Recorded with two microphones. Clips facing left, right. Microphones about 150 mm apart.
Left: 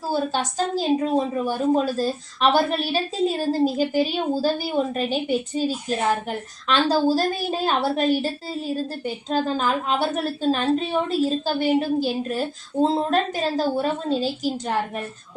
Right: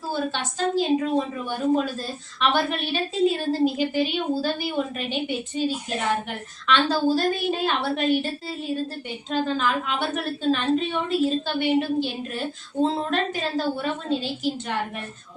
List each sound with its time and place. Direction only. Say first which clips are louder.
0.1 s a woman's voice: left 4 dB; 40° left (ahead or behind)